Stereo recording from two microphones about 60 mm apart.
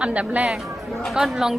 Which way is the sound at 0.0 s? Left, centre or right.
Right.